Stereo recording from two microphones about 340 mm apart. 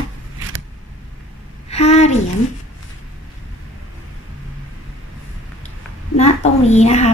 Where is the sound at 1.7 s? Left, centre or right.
Centre.